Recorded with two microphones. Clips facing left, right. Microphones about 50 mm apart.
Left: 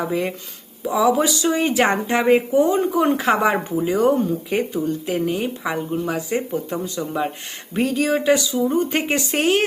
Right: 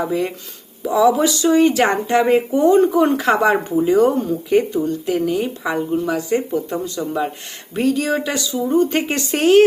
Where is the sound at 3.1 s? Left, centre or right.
Left.